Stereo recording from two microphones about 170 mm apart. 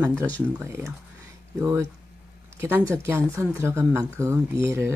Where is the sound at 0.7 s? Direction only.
15° right (ahead or behind).